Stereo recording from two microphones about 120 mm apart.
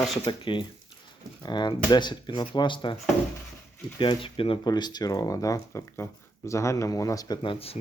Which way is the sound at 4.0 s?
45° left (ahead or behind).